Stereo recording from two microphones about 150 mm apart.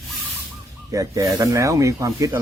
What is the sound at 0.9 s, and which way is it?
Speech, 20° right (ahead or behind).